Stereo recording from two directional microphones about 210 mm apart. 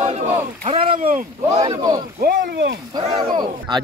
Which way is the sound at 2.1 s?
50° right (ahead or behind).